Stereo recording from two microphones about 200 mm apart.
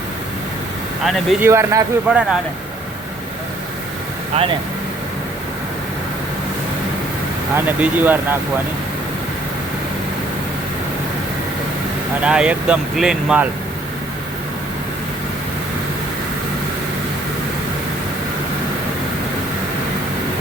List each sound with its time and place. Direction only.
1.0 s speech: centre (ahead or behind)
1.5 s speech: 15° right (ahead or behind)
4.4 s speech: 30° right (ahead or behind)
7.5 s speech: 10° right (ahead or behind)
12.2 s speech: 5° right (ahead or behind)